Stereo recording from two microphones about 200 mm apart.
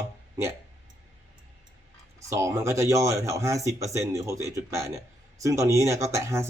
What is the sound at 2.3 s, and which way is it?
Speech, 15° right (ahead or behind).